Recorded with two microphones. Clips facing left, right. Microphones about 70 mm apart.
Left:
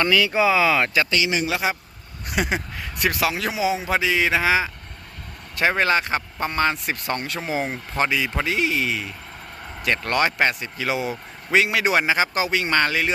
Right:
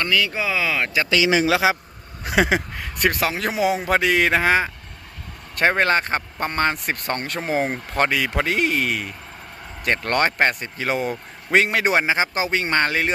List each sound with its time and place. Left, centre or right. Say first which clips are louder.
0.0 s speech: left 4 dB; centre
1.6 s a man's voice: right 5 dB; right
2.7 s speech: right 2 dB; right
4.4 s speech: right 2 dB; right